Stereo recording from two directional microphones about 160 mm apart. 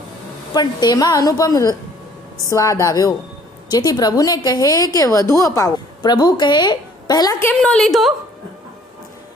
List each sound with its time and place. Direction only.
0.5 s a woman's voice: 25° left (ahead or behind)
7.6 s a woman's voice: 5° left (ahead or behind)